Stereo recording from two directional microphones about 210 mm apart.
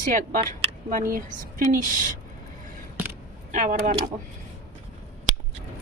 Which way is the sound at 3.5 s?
40° right (ahead or behind).